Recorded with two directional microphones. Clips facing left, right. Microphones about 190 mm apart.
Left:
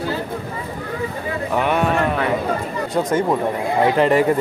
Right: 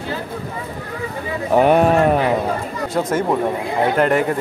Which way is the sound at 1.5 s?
40° right (ahead or behind).